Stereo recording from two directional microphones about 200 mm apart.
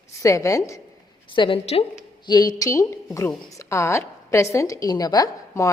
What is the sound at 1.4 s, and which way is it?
A woman's voice, 30° left (ahead or behind).